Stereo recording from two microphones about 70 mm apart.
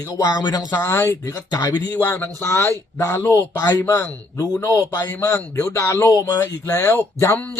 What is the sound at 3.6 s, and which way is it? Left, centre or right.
Speech, left.